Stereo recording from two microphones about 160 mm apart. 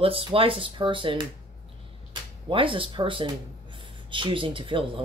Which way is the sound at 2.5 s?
35° right (ahead or behind).